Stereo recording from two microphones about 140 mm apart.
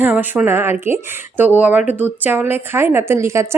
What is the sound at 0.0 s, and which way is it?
A woman's voice, 15° right (ahead or behind).